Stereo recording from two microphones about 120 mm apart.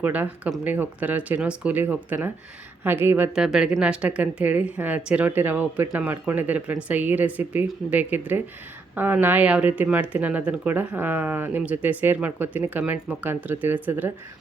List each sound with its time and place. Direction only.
0.0 s a woman's voice: 15° right (ahead or behind)
3.3 s a woman's voice: 5° right (ahead or behind)